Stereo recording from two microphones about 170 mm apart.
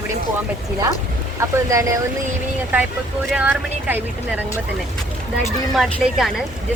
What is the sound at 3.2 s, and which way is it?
Speech, 10° right (ahead or behind).